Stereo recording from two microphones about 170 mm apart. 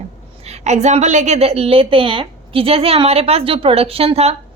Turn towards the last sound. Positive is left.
turn(degrees=-35)  # may be behind; listen again after turning